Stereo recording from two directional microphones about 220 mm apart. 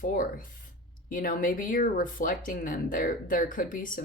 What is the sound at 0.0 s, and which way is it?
Speech, 40° left (ahead or behind).